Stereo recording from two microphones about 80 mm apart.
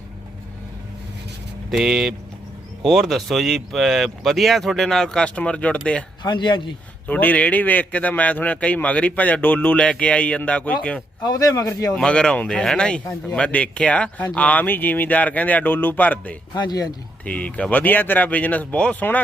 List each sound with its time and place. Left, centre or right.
1.7 s speech: centre
6.2 s speech: left
7.1 s a man's voice: centre
11.2 s speech: left
11.9 s a man's voice: centre
16.6 s speech: left
17.2 s speech: centre